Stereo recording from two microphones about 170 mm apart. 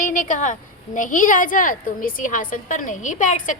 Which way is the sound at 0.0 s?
50° left (ahead or behind).